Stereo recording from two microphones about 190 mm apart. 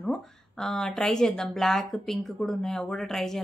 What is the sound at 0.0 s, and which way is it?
Speech, centre (ahead or behind).